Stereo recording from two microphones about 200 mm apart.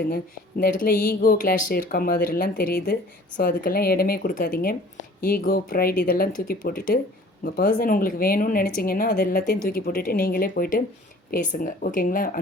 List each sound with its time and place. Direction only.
0.6 s speech: 45° left (ahead or behind)